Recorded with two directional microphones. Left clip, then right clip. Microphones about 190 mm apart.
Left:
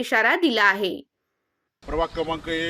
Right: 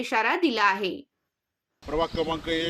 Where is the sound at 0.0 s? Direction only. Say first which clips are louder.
Left 4 dB; 25° left (ahead or behind).